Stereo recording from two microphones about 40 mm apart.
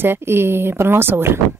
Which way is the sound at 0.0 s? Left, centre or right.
Right.